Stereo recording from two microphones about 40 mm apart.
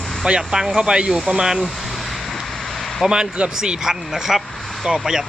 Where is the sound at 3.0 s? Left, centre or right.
Centre.